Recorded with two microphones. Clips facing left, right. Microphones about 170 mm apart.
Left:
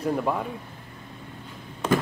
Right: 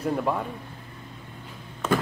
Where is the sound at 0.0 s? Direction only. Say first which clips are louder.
Even; centre (ahead or behind).